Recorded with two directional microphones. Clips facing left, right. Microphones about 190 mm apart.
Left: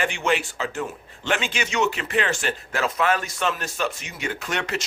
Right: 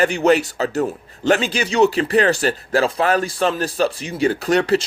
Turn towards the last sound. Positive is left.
turn(degrees=-35)  # may be behind; listen again after turning